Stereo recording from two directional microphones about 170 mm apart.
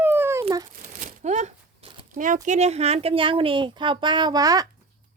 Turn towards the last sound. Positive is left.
turn(degrees=-20)  # may be behind; listen again after turning